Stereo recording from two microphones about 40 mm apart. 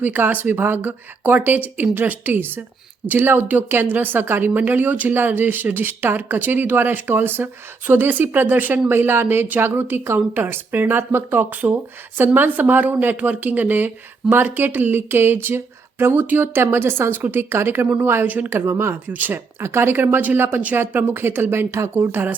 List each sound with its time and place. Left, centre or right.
0.0 s speech: right
0.5 s speech: right
8.9 s speech: right
9.6 s speech: right
16.2 s speech: right
16.6 s speech: right
17.3 s speech: right
18.3 s speech: right
18.5 s speech: right
19.0 s speech: right
19.5 s speech: right
20.3 s speech: right
20.7 s speech: right